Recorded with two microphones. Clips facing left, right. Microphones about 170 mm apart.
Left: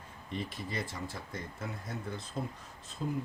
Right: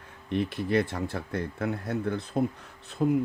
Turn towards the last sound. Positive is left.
turn(degrees=-70)  # may be behind; listen again after turning